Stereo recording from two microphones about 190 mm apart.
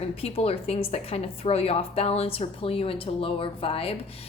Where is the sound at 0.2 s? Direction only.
30° left (ahead or behind).